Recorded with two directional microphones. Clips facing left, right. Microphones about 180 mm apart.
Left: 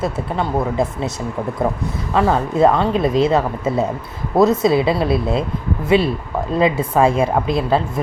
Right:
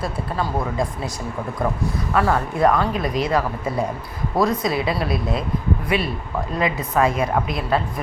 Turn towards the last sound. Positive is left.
turn(degrees=30)  # may be behind; listen again after turning